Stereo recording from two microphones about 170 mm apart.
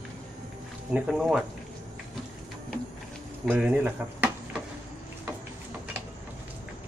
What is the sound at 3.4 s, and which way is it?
Speech, 10° right (ahead or behind).